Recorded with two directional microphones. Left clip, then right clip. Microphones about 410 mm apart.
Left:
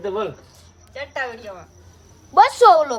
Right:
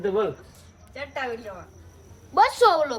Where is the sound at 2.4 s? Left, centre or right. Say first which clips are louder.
Left 6 dB; left.